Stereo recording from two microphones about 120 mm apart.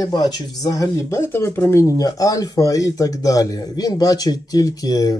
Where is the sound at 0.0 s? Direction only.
30° left (ahead or behind).